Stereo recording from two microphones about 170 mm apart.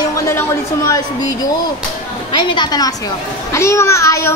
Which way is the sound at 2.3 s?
25° left (ahead or behind).